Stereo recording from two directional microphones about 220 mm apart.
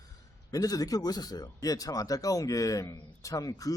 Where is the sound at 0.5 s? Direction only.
15° left (ahead or behind).